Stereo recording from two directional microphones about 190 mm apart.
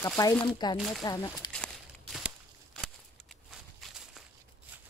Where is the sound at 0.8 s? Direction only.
Centre (ahead or behind).